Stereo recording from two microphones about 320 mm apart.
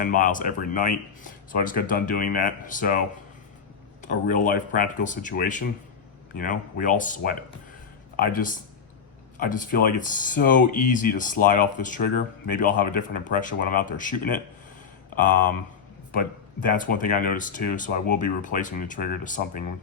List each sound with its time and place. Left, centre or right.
0.0 s speech: left
4.0 s speech: left
16.6 s speech: left